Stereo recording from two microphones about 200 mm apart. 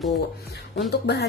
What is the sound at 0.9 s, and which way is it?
Speech, 55° left (ahead or behind).